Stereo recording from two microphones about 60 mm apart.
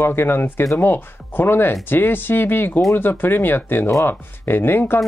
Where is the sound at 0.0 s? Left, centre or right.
Left.